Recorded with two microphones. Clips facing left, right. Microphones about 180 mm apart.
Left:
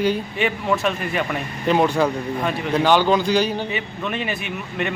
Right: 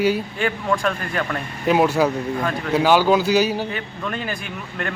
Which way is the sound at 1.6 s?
5° right (ahead or behind).